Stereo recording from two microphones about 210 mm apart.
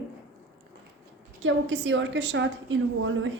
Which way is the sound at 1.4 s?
60° right (ahead or behind).